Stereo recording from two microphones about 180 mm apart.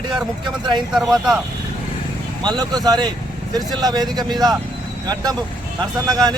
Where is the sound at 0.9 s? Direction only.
Centre (ahead or behind).